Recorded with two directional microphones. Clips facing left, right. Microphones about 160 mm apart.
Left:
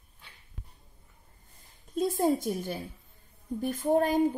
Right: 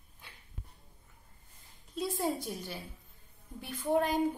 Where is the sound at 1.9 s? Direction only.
50° left (ahead or behind).